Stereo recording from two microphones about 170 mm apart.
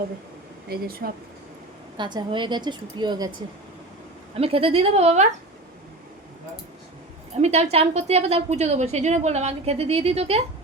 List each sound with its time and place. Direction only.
0.7 s speech: 60° right (ahead or behind)
2.0 s a woman's voice: 25° right (ahead or behind)
4.4 s a woman's voice: 35° right (ahead or behind)
7.3 s a woman's voice: 40° right (ahead or behind)